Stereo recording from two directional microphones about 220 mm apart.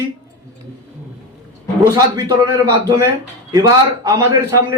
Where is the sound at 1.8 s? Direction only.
15° right (ahead or behind).